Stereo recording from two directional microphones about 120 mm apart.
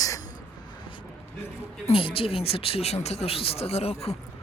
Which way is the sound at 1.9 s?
50° left (ahead or behind).